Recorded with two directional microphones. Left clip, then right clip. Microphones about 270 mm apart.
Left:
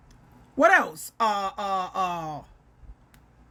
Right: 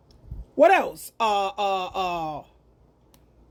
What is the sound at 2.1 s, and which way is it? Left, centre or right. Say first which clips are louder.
Speech: right 3 dB; left.